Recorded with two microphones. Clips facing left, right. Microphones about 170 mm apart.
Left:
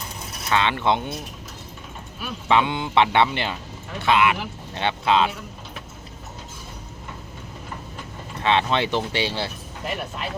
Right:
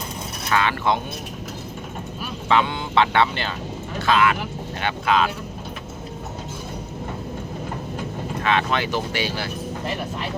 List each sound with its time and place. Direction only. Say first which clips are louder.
0.5 s speech: even; 25° left (ahead or behind)
2.5 s speech: even; 20° left (ahead or behind)
8.4 s speech: left 2 dB; 25° left (ahead or behind)